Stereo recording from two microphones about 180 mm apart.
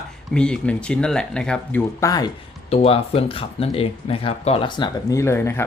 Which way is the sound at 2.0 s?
20° left (ahead or behind).